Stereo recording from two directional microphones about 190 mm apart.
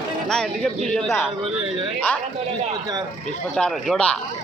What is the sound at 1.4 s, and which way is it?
Speech, 25° right (ahead or behind).